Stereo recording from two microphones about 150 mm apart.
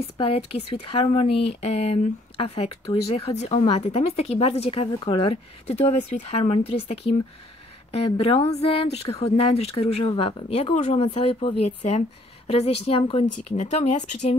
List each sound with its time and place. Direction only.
0.2 s a woman's voice: 40° left (ahead or behind)